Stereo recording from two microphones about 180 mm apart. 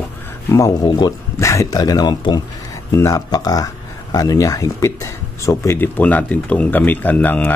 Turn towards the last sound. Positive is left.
turn(degrees=10)  # may be behind; listen again after turning